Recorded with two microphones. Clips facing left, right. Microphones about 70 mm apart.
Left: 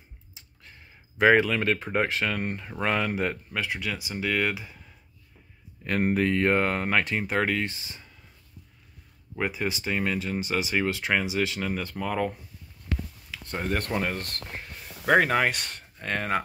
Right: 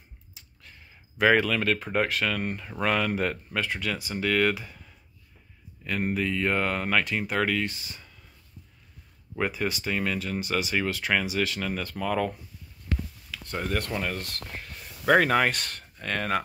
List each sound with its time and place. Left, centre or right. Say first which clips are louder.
0.3 s speech: even; left
5.9 s speech: left 4 dB; left
6.5 s speech: left 2 dB; left
9.4 s speech: right 1 dB; centre
13.3 s a sound: left 1 dB; left
13.7 s speech: left 2 dB; left
15.0 s speech: right 1 dB; centre